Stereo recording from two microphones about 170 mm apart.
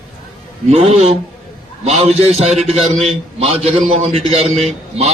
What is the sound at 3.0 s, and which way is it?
A man's voice, 35° right (ahead or behind).